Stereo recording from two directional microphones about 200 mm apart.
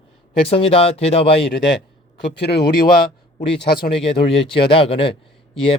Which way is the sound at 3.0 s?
25° left (ahead or behind).